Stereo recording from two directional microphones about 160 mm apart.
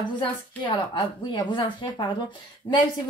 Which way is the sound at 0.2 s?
30° left (ahead or behind).